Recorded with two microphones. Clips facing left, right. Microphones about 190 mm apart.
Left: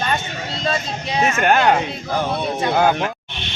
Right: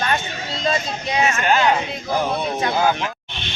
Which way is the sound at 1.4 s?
55° left (ahead or behind).